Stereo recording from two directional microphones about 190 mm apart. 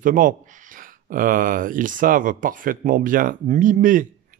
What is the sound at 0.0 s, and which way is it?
Speech, 45° right (ahead or behind).